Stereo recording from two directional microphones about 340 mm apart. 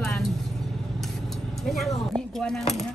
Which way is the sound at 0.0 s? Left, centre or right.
Centre.